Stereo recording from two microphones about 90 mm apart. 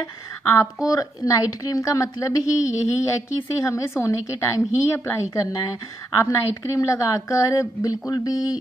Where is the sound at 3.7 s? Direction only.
35° left (ahead or behind).